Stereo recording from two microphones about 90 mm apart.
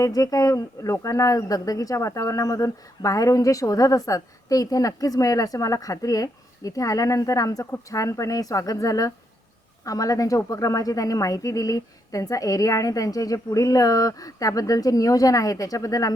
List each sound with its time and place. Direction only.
0.0 s speech: 40° left (ahead or behind)